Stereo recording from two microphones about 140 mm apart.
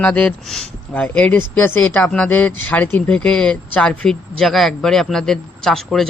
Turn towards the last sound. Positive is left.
turn(degrees=5)  # may be behind; listen again after turning